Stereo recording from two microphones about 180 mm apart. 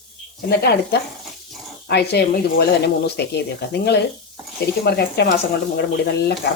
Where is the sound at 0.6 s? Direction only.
65° left (ahead or behind).